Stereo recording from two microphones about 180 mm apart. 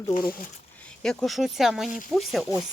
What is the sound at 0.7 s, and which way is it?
Speech, 5° left (ahead or behind).